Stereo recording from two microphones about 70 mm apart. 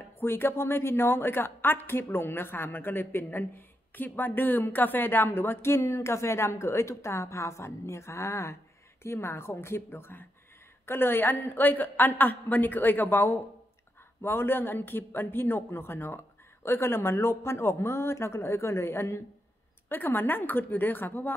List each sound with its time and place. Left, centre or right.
0.2 s a woman's voice: left
19.9 s a woman's voice: left